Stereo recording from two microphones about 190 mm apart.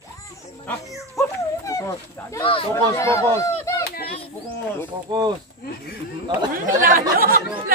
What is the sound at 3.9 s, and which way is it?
Children playing, 50° left (ahead or behind).